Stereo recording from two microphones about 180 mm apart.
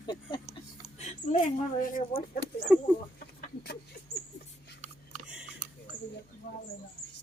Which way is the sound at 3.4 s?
60° left (ahead or behind).